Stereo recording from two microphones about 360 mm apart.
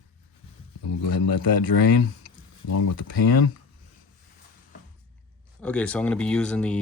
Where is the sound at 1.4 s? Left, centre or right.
Left.